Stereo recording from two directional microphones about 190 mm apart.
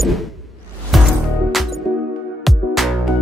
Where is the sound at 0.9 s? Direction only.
Centre (ahead or behind).